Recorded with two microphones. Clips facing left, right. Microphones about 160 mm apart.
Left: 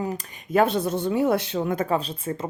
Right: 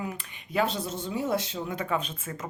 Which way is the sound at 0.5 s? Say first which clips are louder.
Left 7 dB; 55° left (ahead or behind).